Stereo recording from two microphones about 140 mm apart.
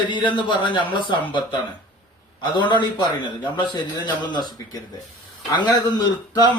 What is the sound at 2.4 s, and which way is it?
Speech, 35° left (ahead or behind).